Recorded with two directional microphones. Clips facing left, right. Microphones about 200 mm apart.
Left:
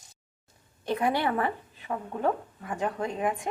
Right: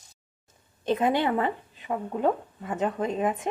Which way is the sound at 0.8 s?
20° right (ahead or behind).